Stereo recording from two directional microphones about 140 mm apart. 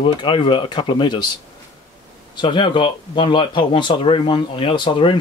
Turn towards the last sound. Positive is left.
turn(degrees=35)  # may be behind; listen again after turning